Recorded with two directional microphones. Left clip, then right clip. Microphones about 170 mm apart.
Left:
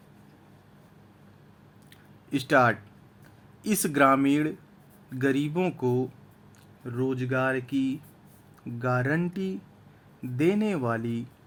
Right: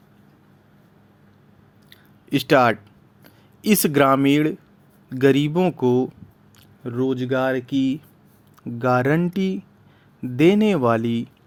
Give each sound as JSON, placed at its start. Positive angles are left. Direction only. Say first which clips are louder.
{"t": 2.3, "sound": "speech", "louder": "right 6 dB", "side_deg": -40}